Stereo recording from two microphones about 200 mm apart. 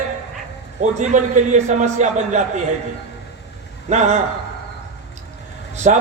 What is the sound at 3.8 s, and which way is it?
Speech, 35° right (ahead or behind).